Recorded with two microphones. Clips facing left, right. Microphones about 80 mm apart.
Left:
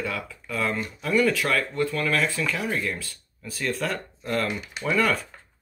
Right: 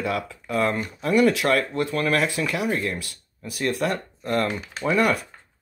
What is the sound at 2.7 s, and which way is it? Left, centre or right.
Speech, right.